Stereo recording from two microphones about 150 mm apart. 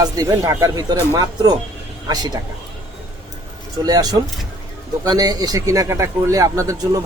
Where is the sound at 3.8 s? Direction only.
25° right (ahead or behind).